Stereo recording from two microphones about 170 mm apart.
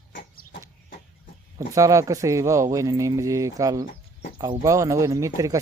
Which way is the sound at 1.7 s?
20° right (ahead or behind).